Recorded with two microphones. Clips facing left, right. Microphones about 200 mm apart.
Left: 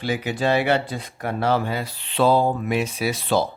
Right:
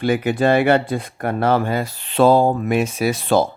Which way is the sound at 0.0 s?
55° right (ahead or behind).